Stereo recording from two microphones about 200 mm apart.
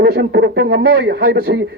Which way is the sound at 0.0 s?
55° right (ahead or behind).